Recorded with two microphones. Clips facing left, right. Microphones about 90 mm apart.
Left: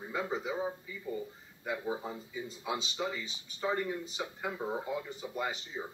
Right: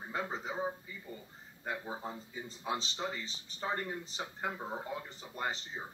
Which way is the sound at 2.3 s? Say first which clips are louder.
Left 1 dB; 40° right (ahead or behind).